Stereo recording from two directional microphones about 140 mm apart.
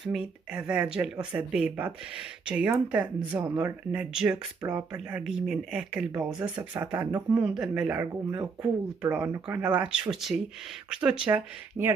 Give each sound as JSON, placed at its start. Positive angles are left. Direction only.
{"t": 0.0, "sound": "speech", "side_deg": -5}